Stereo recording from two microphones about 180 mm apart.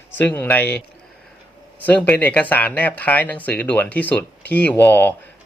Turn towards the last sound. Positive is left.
turn(degrees=10)  # may be behind; listen again after turning